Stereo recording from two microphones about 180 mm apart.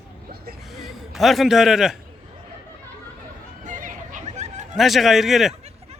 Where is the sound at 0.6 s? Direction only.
Centre (ahead or behind).